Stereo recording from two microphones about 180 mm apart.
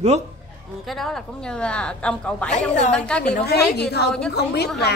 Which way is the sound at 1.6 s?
5° left (ahead or behind).